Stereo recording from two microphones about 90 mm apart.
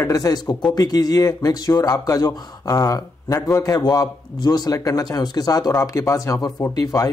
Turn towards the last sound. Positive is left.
turn(degrees=45)  # may be behind; listen again after turning